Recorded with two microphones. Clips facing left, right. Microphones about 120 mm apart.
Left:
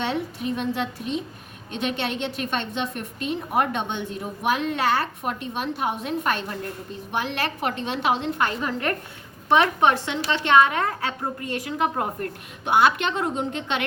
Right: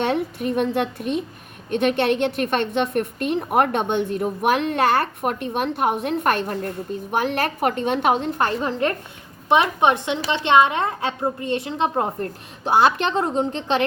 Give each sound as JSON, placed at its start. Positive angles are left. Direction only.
{"t": 0.0, "sound": "a woman's voice", "side_deg": -55}
{"t": 9.5, "sound": "a woman's voice", "side_deg": -20}